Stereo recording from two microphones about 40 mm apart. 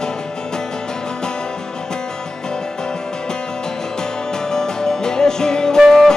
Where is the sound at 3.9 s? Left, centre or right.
Centre.